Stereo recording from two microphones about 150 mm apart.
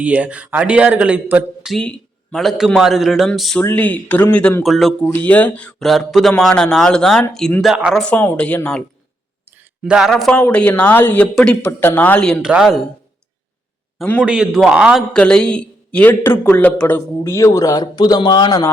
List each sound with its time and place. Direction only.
0.0 s speech: 10° right (ahead or behind)
3.6 s speech: 10° left (ahead or behind); by 8.0 s 5° right (ahead or behind)
8.0 s speech: 10° left (ahead or behind)
9.6 s speech: 5° right (ahead or behind)
14.0 s speech: 10° left (ahead or behind)
14.3 s speech: 5° right (ahead or behind)
15.1 s speech: 5° left (ahead or behind); by 18.6 s 30° left (ahead or behind)